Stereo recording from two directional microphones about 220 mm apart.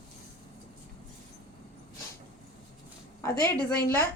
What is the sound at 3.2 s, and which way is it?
Speech, 10° left (ahead or behind).